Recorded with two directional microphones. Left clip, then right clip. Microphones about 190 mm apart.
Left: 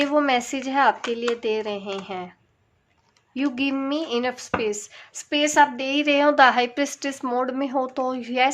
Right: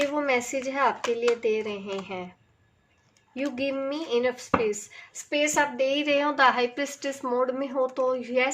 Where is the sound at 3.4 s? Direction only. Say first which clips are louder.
Left 3 dB; 50° left (ahead or behind).